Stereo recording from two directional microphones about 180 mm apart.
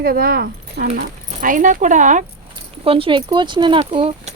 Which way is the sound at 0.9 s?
50° right (ahead or behind).